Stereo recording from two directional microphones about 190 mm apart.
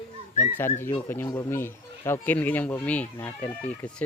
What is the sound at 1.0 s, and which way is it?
Speech, 10° left (ahead or behind).